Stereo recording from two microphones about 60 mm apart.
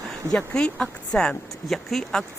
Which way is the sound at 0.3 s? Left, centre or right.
Centre.